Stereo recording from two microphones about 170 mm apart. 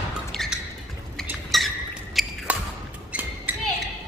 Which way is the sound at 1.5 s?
Centre (ahead or behind).